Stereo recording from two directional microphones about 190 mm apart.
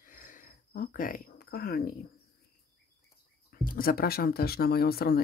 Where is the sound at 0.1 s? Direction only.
45° left (ahead or behind).